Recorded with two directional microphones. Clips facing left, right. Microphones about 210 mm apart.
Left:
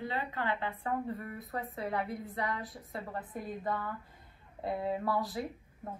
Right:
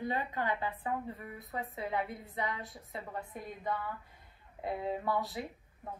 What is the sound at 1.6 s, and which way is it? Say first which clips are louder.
Speech: left 1 dB; centre (ahead or behind).